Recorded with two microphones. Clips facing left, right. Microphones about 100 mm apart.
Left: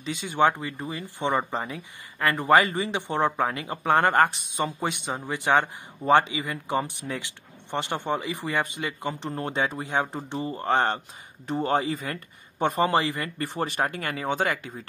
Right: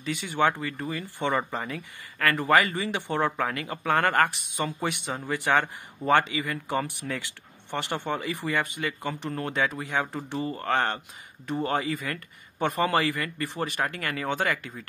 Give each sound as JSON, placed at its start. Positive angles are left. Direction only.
{"t": 0.0, "sound": "speech", "side_deg": 20}
{"t": 13.4, "sound": "speech", "side_deg": 35}